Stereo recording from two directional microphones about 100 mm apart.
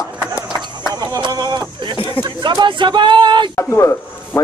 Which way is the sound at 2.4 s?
55° right (ahead or behind).